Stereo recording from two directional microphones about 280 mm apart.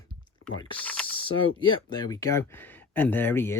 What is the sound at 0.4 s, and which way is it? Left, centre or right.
Typing, left.